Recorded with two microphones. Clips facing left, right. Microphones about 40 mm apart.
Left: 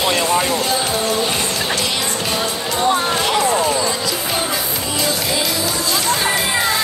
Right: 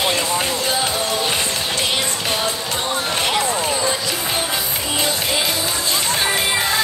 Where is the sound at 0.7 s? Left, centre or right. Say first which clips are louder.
Left 2 dB; right.